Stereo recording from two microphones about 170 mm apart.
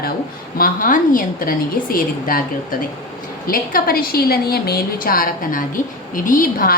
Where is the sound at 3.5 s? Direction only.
60° left (ahead or behind).